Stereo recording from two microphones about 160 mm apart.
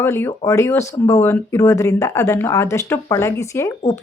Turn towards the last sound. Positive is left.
turn(degrees=20)  # may be behind; listen again after turning